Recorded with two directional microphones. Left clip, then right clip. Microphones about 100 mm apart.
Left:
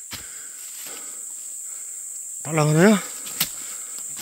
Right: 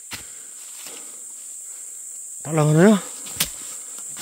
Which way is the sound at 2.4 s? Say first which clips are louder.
Right 1 dB; 50° right (ahead or behind).